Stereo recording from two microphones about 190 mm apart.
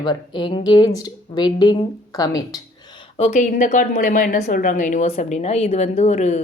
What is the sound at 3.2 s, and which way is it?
A woman's voice, 40° left (ahead or behind).